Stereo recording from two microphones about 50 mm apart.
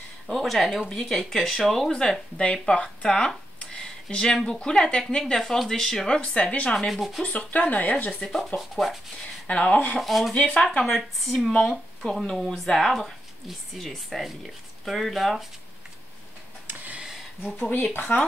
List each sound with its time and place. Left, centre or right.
0.3 s speech: centre
6.0 s speech: left
6.9 s speech: centre
7.2 s speech: left
8.1 s speech: centre
9.5 s speech: left
9.9 s speech: centre
10.3 s speech: left
10.8 s speech: centre
16.6 s a sound: right
17.6 s speech: left